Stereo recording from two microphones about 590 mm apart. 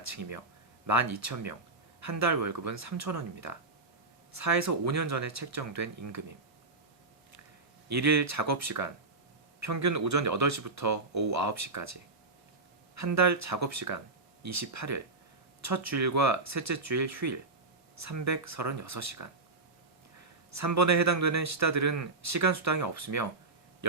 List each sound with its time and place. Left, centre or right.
0.9 s a man's voice: right
7.9 s a man's voice: right
13.0 s a man's voice: right
20.5 s a man's voice: right